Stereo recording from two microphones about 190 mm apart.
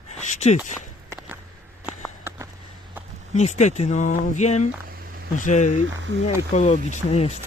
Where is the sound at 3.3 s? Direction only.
35° left (ahead or behind).